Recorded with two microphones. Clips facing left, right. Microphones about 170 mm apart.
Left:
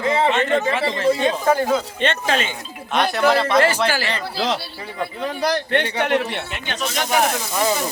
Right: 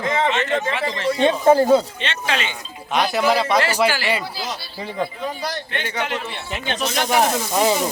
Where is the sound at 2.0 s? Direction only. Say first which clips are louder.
Left 4 dB; 45° left (ahead or behind).